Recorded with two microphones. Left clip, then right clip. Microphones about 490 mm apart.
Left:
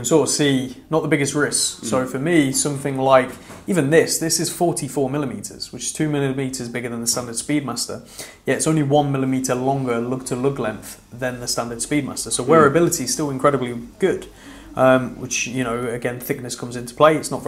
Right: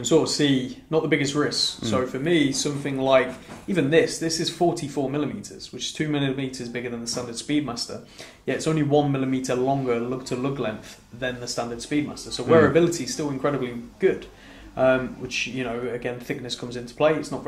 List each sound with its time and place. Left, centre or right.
0.0 s speech: centre